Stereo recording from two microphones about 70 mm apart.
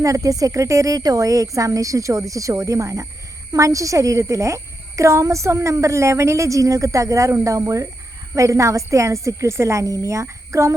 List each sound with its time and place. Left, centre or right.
0.0 s a woman's voice: right